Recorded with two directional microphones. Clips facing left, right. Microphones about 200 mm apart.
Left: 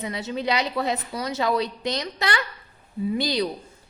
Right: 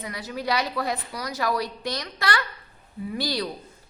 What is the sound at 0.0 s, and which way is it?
A woman's voice, 25° left (ahead or behind).